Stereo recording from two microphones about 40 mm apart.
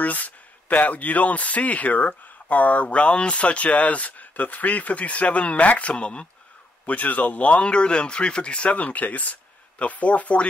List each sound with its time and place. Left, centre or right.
0.0 s speech: left
6.9 s speech: left